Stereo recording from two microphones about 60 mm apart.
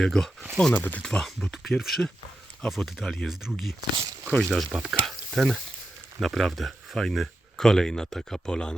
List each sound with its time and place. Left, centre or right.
0.0 s speech: centre
0.7 s speech: left
1.0 s speech: centre
4.4 s speech: centre
4.7 s speech: centre
5.0 s speech: centre